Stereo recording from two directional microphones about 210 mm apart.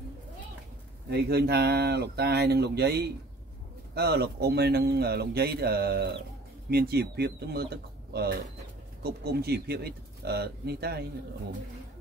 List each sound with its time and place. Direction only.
1.1 s a man's voice: 50° right (ahead or behind)